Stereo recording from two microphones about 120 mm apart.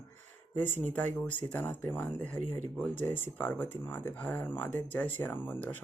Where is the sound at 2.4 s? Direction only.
90° right.